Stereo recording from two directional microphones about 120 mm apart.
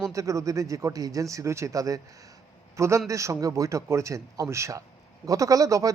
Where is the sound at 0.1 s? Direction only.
25° right (ahead or behind).